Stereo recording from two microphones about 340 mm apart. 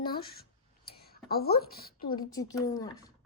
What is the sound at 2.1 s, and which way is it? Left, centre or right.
Speech, centre.